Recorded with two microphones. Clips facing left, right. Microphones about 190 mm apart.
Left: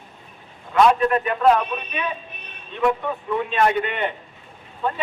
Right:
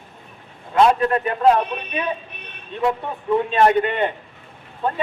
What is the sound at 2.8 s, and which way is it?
Speech, 25° right (ahead or behind).